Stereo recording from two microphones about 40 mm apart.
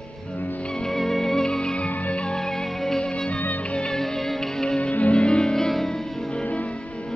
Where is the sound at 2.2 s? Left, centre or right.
Centre.